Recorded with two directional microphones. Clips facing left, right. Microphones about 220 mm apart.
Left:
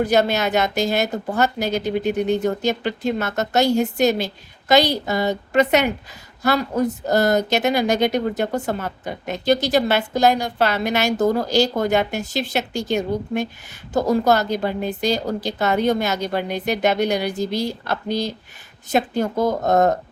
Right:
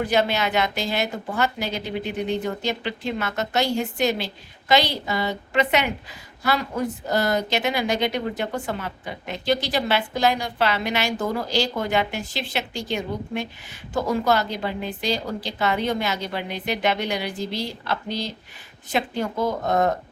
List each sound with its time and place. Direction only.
0.0 s speech: 40° left (ahead or behind)